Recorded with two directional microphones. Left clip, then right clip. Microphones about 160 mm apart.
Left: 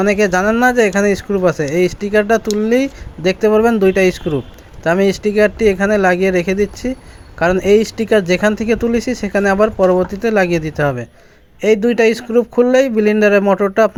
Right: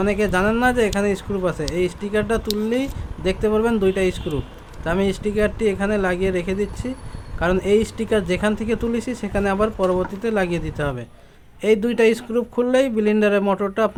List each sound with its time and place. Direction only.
0.0 s speech: 35° left (ahead or behind)